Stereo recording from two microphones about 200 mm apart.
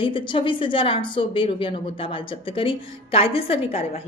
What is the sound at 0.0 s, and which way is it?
A woman's voice, 25° left (ahead or behind).